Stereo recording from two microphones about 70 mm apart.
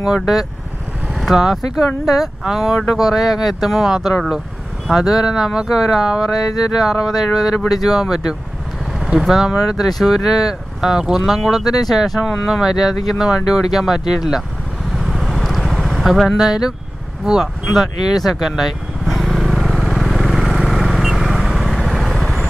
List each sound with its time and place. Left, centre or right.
1.3 s speech: centre
6.3 s mantra: left
6.8 s speech: centre
14.9 s vehicle: centre
17.2 s speech: centre
17.7 s vehicle: centre